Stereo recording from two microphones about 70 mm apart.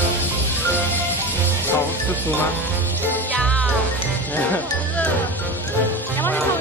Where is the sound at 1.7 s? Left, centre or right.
Left.